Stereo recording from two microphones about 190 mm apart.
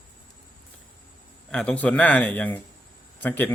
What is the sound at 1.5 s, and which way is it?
Speech, 5° left (ahead or behind).